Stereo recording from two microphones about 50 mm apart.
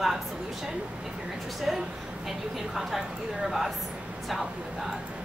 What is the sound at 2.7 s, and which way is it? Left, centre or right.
A woman's voice, centre.